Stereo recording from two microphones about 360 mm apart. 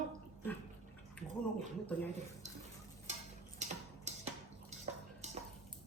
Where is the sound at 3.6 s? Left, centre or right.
Centre.